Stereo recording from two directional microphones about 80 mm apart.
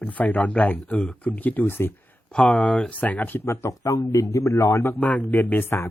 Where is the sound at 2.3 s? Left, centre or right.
Centre; by 4.9 s left.